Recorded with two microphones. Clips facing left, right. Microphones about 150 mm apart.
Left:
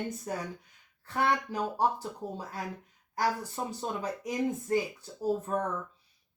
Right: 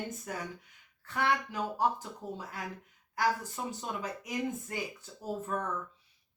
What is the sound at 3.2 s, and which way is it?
Speech, 35° left (ahead or behind).